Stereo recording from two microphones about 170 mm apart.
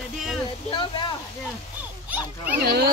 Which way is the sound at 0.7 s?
25° left (ahead or behind).